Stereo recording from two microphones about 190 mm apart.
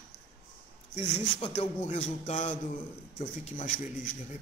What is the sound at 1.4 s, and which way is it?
A man's voice, 35° left (ahead or behind).